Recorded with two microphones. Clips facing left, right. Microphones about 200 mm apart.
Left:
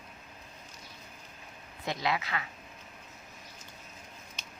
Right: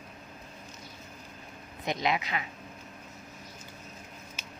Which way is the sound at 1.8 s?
20° right (ahead or behind).